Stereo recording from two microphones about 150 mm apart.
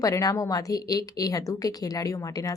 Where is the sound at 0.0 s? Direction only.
20° left (ahead or behind).